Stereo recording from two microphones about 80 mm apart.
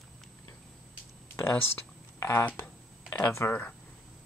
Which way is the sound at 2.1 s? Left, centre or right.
Left.